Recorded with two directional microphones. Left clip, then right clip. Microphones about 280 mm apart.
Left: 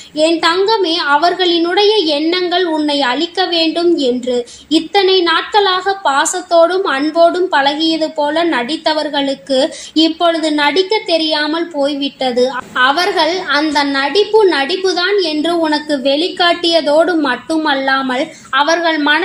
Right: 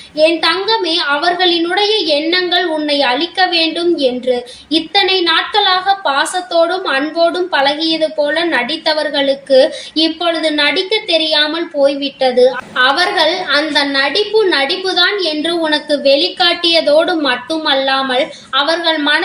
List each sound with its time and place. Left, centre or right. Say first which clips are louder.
0.2 s a woman's voice: even; left